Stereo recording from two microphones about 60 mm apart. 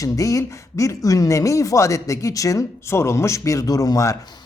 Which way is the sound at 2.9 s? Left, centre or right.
Left.